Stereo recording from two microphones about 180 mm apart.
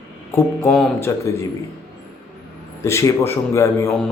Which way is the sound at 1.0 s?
15° left (ahead or behind).